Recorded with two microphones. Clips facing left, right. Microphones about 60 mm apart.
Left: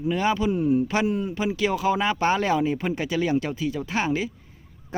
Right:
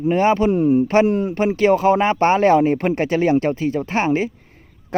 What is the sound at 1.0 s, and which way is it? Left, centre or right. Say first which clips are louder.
Speech: right 7 dB; right.